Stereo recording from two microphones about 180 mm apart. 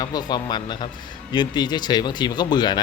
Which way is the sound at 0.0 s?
20° left (ahead or behind).